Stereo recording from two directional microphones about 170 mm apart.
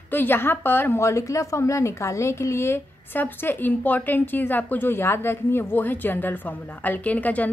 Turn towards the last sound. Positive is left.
turn(degrees=10)  # may be behind; listen again after turning